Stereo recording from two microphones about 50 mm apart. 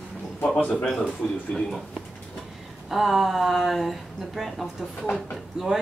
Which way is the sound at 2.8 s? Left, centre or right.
Centre.